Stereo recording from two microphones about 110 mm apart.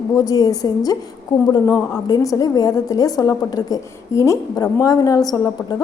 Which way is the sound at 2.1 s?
35° left (ahead or behind).